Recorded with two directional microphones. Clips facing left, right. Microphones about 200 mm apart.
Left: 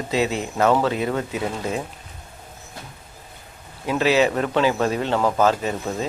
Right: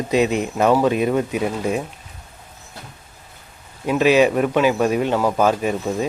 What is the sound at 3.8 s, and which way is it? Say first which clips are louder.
A man's voice: right 4 dB; 15° right (ahead or behind).